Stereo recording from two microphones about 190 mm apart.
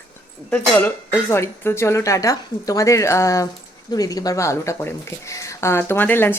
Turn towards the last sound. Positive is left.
turn(degrees=10)  # may be behind; listen again after turning